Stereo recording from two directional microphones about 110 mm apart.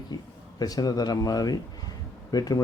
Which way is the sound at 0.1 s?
40° left (ahead or behind).